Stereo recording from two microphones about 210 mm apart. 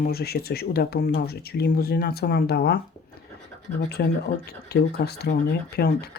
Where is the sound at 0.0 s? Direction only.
45° left (ahead or behind).